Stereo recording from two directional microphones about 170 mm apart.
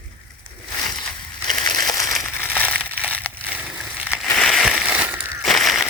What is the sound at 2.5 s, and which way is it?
Crumpling, 10° left (ahead or behind).